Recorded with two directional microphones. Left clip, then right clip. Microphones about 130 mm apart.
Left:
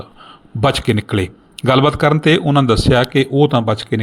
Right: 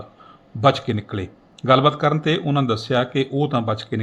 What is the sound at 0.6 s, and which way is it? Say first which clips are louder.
Speech: left 2 dB; 35° left (ahead or behind).